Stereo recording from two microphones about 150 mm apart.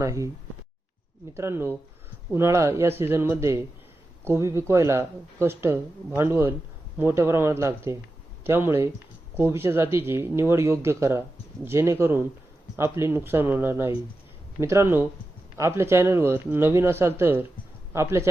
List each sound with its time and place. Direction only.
0.0 s a man's voice: 20° right (ahead or behind)
1.3 s a man's voice: 15° right (ahead or behind)